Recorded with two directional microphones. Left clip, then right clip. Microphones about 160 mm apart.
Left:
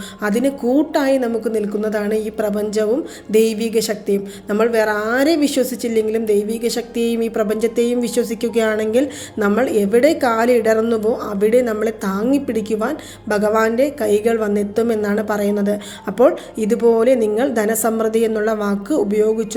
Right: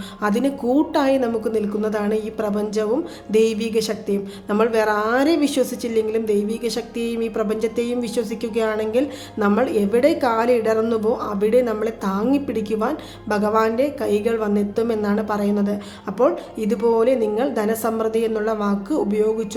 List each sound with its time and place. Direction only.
0.2 s a woman's voice: 15° left (ahead or behind)